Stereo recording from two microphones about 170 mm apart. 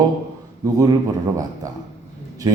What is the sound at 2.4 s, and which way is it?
Speech, 25° right (ahead or behind).